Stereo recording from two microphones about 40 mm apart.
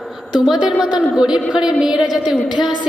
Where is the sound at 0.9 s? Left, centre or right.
Centre.